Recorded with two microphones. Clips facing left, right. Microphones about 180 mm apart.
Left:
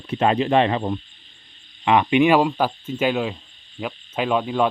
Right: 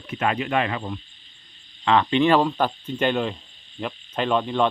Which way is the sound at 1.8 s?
15° left (ahead or behind).